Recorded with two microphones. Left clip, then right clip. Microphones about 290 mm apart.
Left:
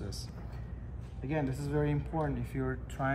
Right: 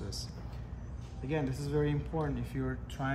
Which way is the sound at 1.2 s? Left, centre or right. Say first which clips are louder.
Even; centre.